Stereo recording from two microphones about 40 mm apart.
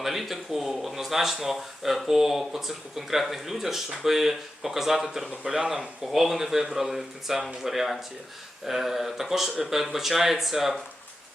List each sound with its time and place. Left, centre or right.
0.0 s speech: centre
6.1 s speech: centre